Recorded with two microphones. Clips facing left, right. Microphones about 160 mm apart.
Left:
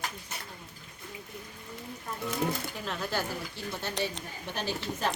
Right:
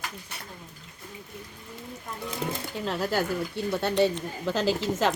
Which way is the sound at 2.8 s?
35° right (ahead or behind).